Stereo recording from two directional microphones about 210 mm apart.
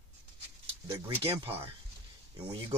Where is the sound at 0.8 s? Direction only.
20° right (ahead or behind).